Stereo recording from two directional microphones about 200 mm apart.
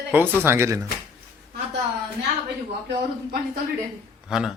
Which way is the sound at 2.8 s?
50° right (ahead or behind).